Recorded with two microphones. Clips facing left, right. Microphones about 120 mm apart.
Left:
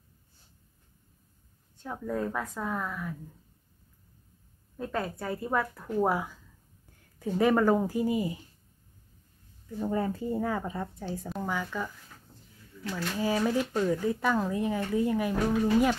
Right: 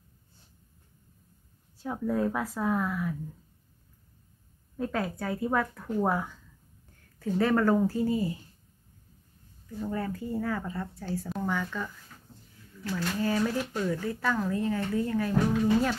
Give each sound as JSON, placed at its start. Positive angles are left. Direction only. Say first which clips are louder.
{"t": 1.8, "sound": "a woman's voice", "louder": "right 4 dB", "side_deg": -5}
{"t": 4.7, "sound": "a woman's voice", "louder": "right 2 dB", "side_deg": 0}
{"t": 9.8, "sound": "speech", "louder": "left 3 dB", "side_deg": 25}
{"t": 11.2, "sound": "a woman's voice", "louder": "right 1 dB", "side_deg": 5}